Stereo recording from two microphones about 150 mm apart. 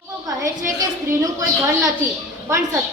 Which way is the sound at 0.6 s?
20° right (ahead or behind).